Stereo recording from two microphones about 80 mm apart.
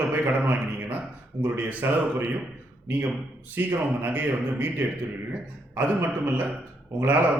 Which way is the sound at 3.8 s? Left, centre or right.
Right.